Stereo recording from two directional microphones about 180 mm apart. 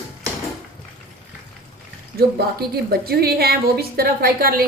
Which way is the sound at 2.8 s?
60° right (ahead or behind).